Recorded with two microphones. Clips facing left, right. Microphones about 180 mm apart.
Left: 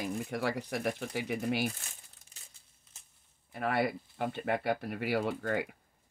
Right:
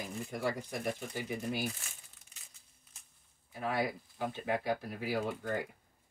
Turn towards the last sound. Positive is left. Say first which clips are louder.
# left 3 dB
turn(degrees=75)  # may be behind; listen again after turning